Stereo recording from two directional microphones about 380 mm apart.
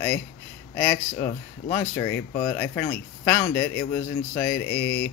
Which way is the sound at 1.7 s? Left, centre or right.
Centre.